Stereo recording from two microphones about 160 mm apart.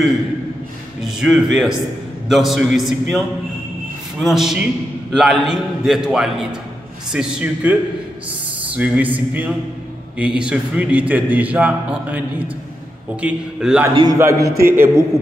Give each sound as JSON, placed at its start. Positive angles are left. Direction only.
{"t": 1.0, "sound": "a man's voice", "side_deg": -5}
{"t": 8.7, "sound": "a man's voice", "side_deg": -10}
{"t": 14.1, "sound": "a man's voice", "side_deg": -15}